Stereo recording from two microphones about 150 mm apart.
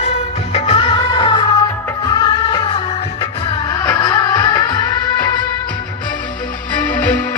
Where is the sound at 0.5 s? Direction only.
40° left (ahead or behind).